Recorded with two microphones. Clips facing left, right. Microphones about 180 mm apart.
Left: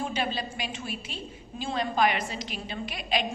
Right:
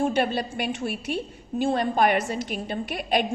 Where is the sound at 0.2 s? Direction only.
60° right (ahead or behind).